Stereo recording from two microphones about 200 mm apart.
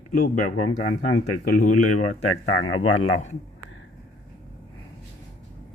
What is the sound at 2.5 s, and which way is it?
Speech, 75° left (ahead or behind).